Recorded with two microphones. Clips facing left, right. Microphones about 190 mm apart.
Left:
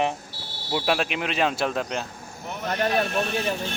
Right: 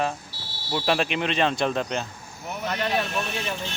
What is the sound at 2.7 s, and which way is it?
Speech, 40° left (ahead or behind).